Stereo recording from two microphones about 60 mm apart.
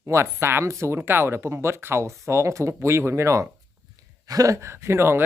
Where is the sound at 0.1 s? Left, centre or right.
Right.